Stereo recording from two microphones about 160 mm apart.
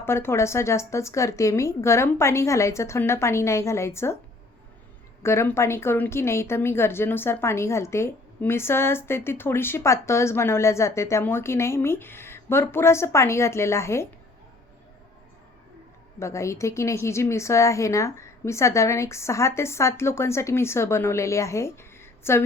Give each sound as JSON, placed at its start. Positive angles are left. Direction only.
{"t": 0.0, "sound": "a woman's voice", "side_deg": 15}
{"t": 5.2, "sound": "a woman's voice", "side_deg": 15}
{"t": 16.1, "sound": "a woman's voice", "side_deg": 20}